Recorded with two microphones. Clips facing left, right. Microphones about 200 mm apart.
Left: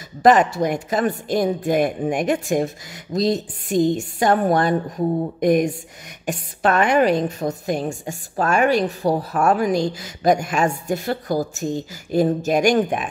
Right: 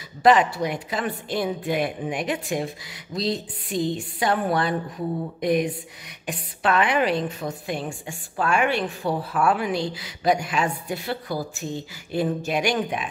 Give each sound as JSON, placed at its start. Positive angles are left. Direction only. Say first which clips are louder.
{"t": 0.2, "sound": "a woman's voice", "louder": "left 3 dB", "side_deg": 45}